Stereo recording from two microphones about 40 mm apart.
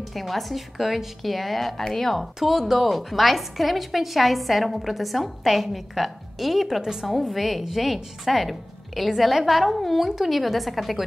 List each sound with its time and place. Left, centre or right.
0.1 s a woman's voice: centre
6.8 s a woman's voice: centre
7.1 s a woman's voice: centre